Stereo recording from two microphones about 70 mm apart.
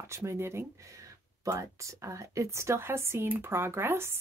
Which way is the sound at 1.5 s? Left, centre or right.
Right.